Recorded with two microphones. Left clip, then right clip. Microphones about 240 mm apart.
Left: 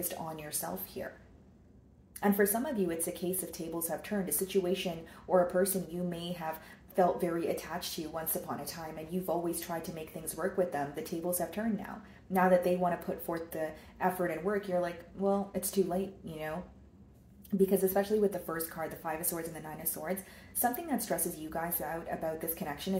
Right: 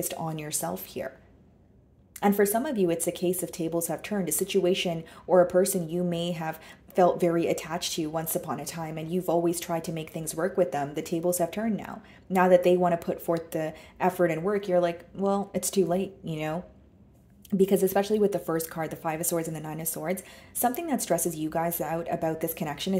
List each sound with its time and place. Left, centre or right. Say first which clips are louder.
0.1 s speech: right 6 dB; right
2.1 s speech: right 6 dB; right
17.6 s speech: right 5 dB; right